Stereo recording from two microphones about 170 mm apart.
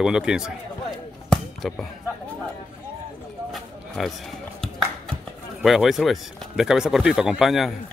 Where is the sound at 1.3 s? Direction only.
Centre (ahead or behind).